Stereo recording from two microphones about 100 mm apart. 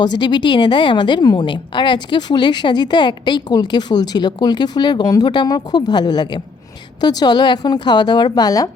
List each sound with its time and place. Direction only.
0.0 s a woman's voice: 50° left (ahead or behind)